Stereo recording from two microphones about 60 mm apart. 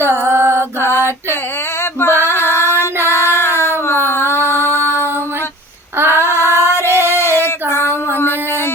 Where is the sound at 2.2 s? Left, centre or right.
Left.